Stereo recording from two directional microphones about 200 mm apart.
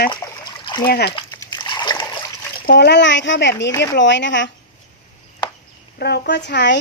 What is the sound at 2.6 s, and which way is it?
Speech, 50° left (ahead or behind).